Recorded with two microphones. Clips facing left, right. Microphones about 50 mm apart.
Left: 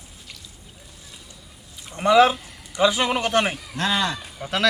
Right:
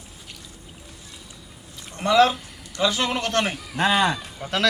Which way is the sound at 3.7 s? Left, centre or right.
Centre.